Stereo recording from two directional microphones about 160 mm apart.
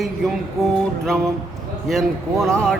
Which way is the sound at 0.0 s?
Centre (ahead or behind).